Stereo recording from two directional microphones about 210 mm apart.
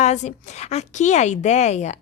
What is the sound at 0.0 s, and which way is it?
A woman's voice, 35° left (ahead or behind).